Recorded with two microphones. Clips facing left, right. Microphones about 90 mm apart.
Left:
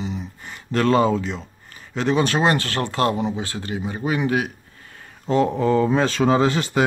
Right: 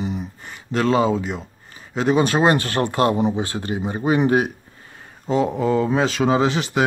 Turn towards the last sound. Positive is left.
turn(degrees=-10)  # may be behind; listen again after turning